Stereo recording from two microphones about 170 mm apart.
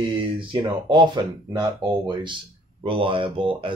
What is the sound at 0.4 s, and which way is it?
Speech, 30° right (ahead or behind).